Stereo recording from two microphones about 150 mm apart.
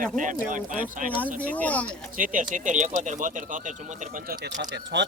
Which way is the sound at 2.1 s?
65° right (ahead or behind).